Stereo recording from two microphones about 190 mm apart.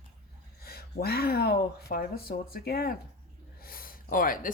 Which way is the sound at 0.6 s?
55° left (ahead or behind).